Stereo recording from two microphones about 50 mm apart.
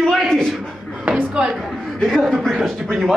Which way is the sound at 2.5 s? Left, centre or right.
Centre.